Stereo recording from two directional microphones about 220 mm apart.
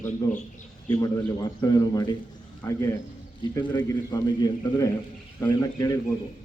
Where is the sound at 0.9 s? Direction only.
15° left (ahead or behind).